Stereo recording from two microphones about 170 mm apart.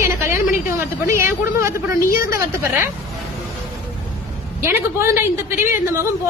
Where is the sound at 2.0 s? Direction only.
55° left (ahead or behind).